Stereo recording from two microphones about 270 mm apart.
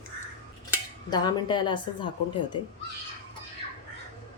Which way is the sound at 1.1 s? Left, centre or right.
Centre.